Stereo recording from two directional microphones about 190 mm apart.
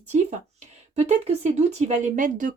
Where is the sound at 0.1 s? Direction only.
35° right (ahead or behind).